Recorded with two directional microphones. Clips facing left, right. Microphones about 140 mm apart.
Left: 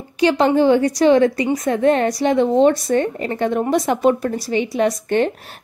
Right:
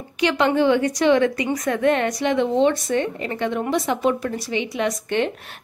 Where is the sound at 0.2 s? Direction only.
35° left (ahead or behind).